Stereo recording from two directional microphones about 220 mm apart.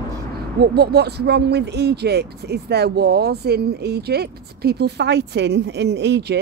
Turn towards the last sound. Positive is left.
turn(degrees=-50)  # may be behind; listen again after turning